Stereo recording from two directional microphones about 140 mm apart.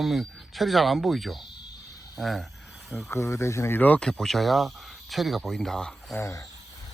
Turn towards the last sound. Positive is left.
turn(degrees=20)  # may be behind; listen again after turning